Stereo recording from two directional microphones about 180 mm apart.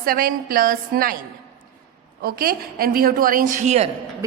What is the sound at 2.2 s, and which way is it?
A woman's voice, 55° right (ahead or behind).